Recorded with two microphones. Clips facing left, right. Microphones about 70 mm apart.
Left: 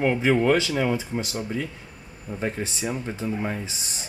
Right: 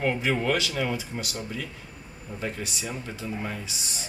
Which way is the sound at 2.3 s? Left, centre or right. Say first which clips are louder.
Left 4 dB; left.